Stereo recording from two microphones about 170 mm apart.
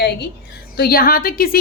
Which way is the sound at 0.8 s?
60° left (ahead or behind).